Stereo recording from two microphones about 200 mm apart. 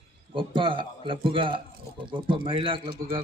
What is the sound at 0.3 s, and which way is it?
Speech, 25° right (ahead or behind).